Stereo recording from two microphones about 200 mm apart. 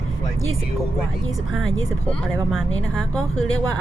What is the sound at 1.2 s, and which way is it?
Speech, 75° left (ahead or behind).